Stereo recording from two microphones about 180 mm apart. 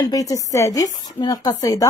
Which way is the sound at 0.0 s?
20° left (ahead or behind).